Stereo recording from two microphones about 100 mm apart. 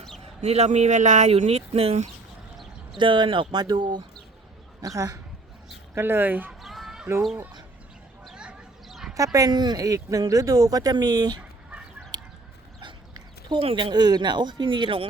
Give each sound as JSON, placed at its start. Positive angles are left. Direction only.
{"t": 0.4, "sound": "speech", "side_deg": -90}
{"t": 3.0, "sound": "speech", "side_deg": -55}
{"t": 4.9, "sound": "speech", "side_deg": -35}
{"t": 5.9, "sound": "speech", "side_deg": -20}
{"t": 6.5, "sound": "a sound", "side_deg": 0}
{"t": 8.2, "sound": "a sound", "side_deg": -5}
{"t": 9.1, "sound": "speech", "side_deg": -35}
{"t": 12.1, "sound": "chicken", "side_deg": -45}
{"t": 12.8, "sound": "dog", "side_deg": -50}
{"t": 13.6, "sound": "speech", "side_deg": -70}
{"t": 13.9, "sound": "speech", "side_deg": -45}